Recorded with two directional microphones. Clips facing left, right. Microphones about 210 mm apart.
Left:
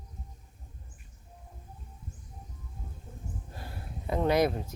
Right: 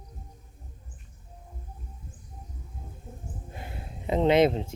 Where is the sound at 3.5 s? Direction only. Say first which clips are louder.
Right 2 dB; 20° right (ahead or behind).